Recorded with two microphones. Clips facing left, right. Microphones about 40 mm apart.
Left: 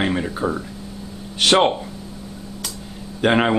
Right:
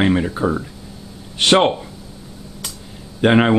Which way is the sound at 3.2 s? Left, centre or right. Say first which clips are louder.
Right 3 dB; centre.